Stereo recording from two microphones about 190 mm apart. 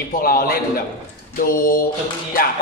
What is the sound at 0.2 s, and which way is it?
Speech, 50° left (ahead or behind).